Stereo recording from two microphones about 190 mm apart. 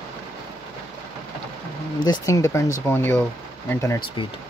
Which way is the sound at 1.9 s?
20° left (ahead or behind).